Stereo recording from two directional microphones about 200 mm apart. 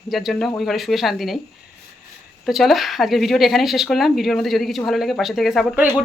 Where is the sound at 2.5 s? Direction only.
Centre (ahead or behind).